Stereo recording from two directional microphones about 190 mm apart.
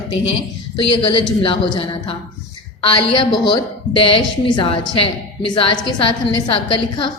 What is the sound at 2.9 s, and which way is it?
A woman's voice, 25° left (ahead or behind).